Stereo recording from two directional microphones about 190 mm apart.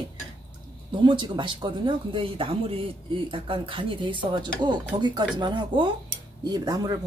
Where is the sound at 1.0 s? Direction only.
25° right (ahead or behind).